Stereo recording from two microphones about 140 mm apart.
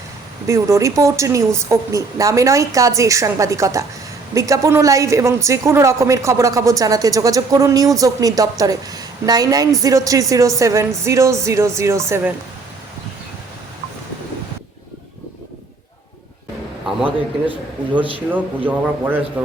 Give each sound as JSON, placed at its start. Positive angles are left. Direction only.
{"t": 0.4, "sound": "a woman's voice", "side_deg": -20}
{"t": 18.3, "sound": "a man's voice", "side_deg": -10}